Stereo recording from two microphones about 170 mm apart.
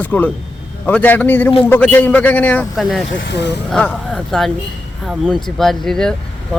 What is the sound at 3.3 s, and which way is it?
Speech, 90° left.